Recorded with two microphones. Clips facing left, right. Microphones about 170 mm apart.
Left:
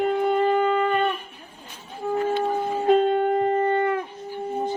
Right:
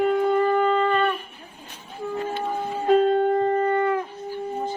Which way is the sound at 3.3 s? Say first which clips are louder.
Even; 15° left (ahead or behind).